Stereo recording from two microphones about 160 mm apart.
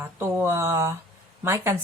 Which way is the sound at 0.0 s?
15° right (ahead or behind).